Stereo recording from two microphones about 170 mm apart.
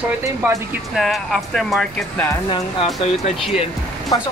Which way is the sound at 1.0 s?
Centre (ahead or behind).